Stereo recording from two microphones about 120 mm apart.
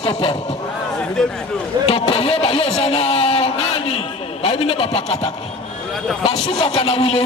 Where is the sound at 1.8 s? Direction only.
55° left (ahead or behind).